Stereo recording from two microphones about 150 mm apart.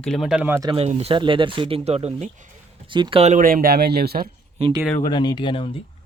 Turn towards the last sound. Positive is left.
turn(degrees=35)  # may be behind; listen again after turning